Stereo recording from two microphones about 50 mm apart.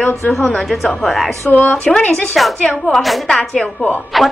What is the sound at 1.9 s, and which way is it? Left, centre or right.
Speech, left.